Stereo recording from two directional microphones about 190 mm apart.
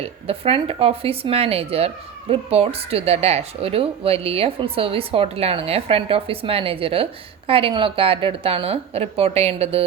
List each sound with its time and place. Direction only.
0.0 s speech: 30° right (ahead or behind)